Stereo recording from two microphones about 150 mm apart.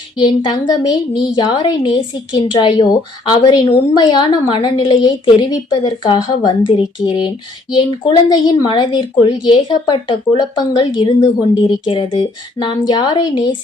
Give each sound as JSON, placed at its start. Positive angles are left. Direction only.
{"t": 0.2, "sound": "a woman's voice", "side_deg": 30}